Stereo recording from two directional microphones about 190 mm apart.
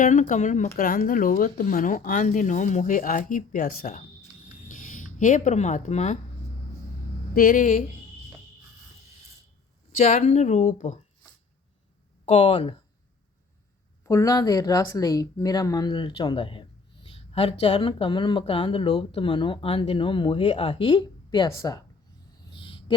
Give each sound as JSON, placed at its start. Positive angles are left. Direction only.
{"t": 0.0, "sound": "speech", "side_deg": 40}
{"t": 7.3, "sound": "speech", "side_deg": 45}
{"t": 10.0, "sound": "speech", "side_deg": 35}
{"t": 12.2, "sound": "speech", "side_deg": 30}
{"t": 14.0, "sound": "speech", "side_deg": 15}
{"t": 22.5, "sound": "a sound", "side_deg": 25}